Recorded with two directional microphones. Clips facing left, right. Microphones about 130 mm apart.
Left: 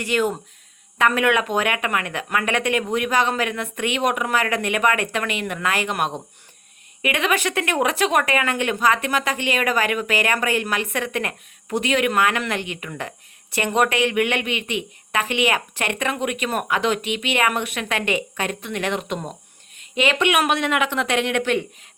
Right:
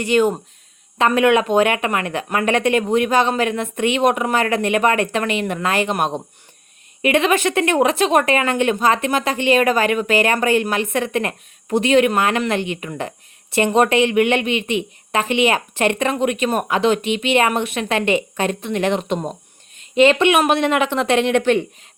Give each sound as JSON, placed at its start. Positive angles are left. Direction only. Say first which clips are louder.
{"t": 0.0, "sound": "a woman's voice", "louder": "right 5 dB", "side_deg": -25}